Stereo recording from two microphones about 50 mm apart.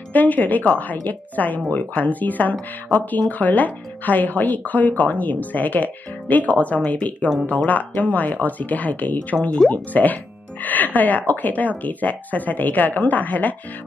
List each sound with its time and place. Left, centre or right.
0.1 s speech: left